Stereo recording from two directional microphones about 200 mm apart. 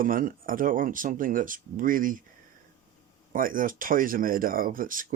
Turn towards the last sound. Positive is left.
turn(degrees=-45)  # may be behind; listen again after turning